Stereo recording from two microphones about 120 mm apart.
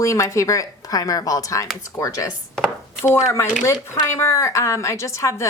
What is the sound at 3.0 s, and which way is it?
Speech, 20° left (ahead or behind).